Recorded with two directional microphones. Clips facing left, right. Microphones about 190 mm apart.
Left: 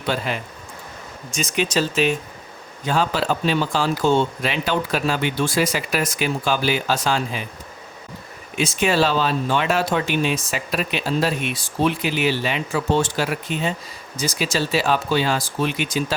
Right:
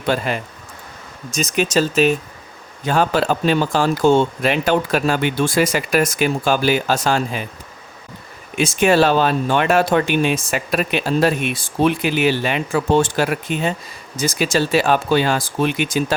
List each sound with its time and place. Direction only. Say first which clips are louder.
0.1 s speech: right 4 dB; 50° right (ahead or behind)
1.3 s speech: right 4 dB; 40° right (ahead or behind)
2.8 s speech: right 4 dB; 55° right (ahead or behind)
8.5 s speech: right 5 dB; 55° right (ahead or behind)